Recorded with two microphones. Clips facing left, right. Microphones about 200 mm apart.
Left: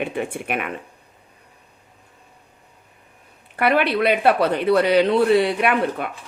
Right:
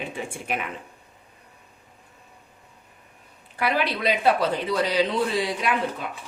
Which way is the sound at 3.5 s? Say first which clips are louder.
Left 6 dB; 60° left (ahead or behind).